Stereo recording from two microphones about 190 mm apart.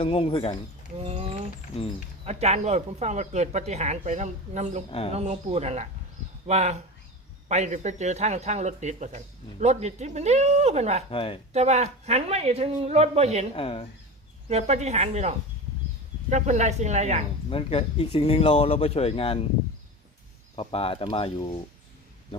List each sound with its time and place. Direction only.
0.0 s speech: 30° left (ahead or behind)
0.9 s a sound: 35° right (ahead or behind)
2.2 s speech: 35° right (ahead or behind)
4.9 s speech: 30° left (ahead or behind)
5.1 s speech: 35° right (ahead or behind)
11.1 s speech: 30° left (ahead or behind)
11.5 s speech: 35° right (ahead or behind)
13.5 s speech: 30° left (ahead or behind)
14.5 s speech: 35° right (ahead or behind)
17.5 s speech: 30° left (ahead or behind)
20.6 s speech: 30° left (ahead or behind)